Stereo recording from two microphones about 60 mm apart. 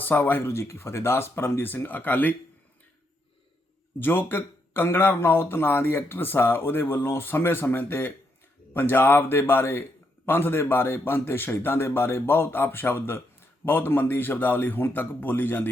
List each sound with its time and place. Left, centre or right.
0.0 s speech: left
4.0 s speech: left